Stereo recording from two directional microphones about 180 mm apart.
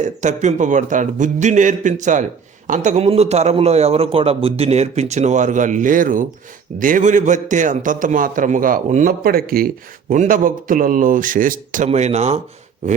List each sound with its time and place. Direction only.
0.0 s a man's voice: 40° right (ahead or behind)